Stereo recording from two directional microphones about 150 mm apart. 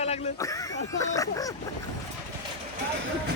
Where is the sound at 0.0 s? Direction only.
45° left (ahead or behind).